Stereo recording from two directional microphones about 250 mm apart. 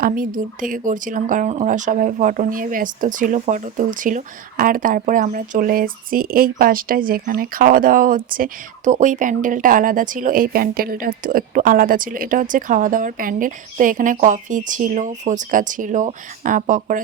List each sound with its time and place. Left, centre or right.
0.0 s speech: right